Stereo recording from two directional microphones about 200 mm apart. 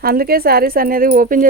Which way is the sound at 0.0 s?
50° right (ahead or behind).